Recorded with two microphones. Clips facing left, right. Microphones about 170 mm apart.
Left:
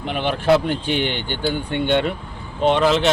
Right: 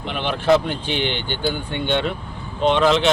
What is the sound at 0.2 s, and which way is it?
Speech, 10° left (ahead or behind).